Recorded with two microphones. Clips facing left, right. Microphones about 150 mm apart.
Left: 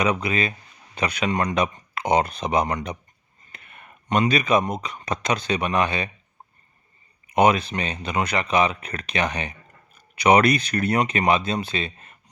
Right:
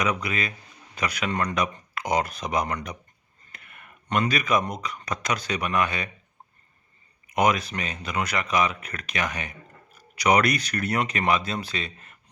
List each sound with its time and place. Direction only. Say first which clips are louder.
0.0 s speech: left 4 dB; 30° left (ahead or behind)
7.3 s speech: left 4 dB; 30° left (ahead or behind)